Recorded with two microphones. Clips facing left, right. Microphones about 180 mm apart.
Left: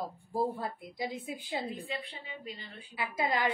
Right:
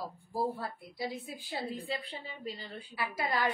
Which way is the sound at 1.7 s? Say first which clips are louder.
Right 1 dB; 35° right (ahead or behind).